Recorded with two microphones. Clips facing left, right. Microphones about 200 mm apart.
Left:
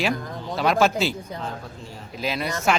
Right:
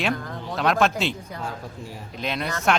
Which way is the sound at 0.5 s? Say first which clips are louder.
Left 1 dB; centre (ahead or behind).